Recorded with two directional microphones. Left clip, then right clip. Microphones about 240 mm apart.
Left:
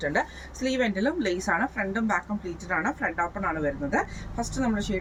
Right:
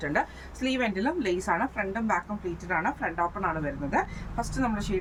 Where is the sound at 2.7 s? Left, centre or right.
Centre.